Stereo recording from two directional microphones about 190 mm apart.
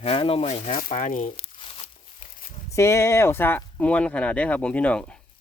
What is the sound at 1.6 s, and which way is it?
Crumpling, 30° left (ahead or behind).